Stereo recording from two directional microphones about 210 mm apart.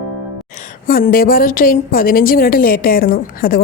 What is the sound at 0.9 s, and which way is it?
A woman's voice, 45° left (ahead or behind).